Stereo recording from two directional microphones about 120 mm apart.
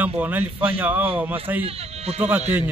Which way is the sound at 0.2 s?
15° right (ahead or behind).